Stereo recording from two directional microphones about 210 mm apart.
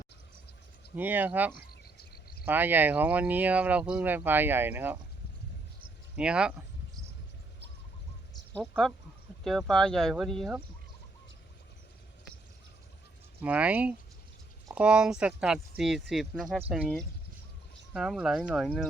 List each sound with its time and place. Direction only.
0.9 s speech: 10° right (ahead or behind)
1.5 s cricket: 45° left (ahead or behind)
2.4 s speech: 10° right (ahead or behind)
6.1 s speech: 5° right (ahead or behind)
8.5 s speech: 5° left (ahead or behind)
13.4 s speech: 5° right (ahead or behind)